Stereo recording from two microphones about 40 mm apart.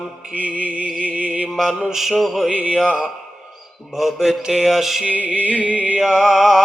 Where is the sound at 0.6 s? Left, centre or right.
Right.